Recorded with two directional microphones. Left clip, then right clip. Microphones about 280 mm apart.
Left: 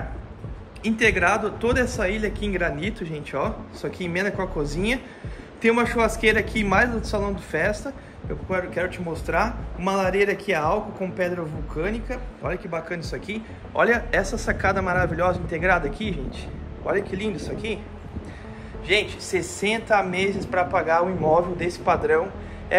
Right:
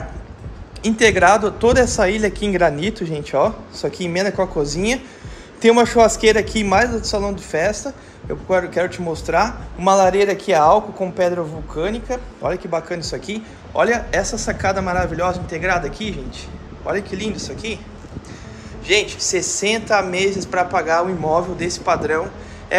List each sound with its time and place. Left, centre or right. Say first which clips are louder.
0.8 s a man's voice: right 7 dB; centre
18.9 s a man's voice: right 5 dB; centre